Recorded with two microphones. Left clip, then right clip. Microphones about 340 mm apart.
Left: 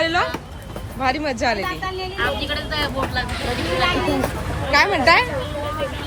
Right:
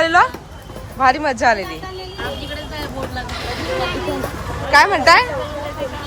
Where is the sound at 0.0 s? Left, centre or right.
Centre.